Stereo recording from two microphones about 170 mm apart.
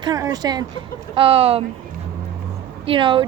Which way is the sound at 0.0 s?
20° right (ahead or behind).